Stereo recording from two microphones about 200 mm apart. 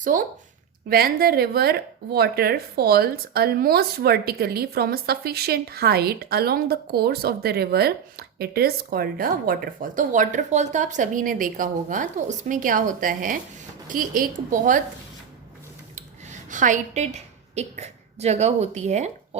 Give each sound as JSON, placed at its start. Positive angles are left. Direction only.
{"t": 0.1, "sound": "a woman's voice", "side_deg": -45}
{"t": 16.5, "sound": "a woman's voice", "side_deg": -40}